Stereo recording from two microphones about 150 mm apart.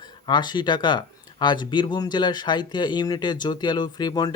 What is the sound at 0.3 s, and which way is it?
Speech, 30° left (ahead or behind).